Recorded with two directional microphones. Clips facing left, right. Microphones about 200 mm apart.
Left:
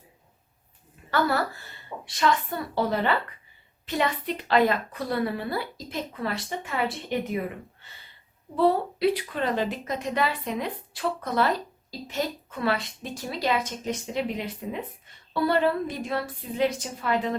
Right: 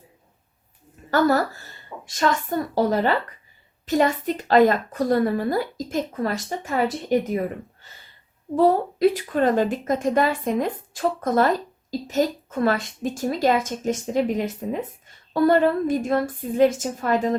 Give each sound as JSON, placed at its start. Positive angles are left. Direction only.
{"t": 1.1, "sound": "a woman's voice", "side_deg": -45}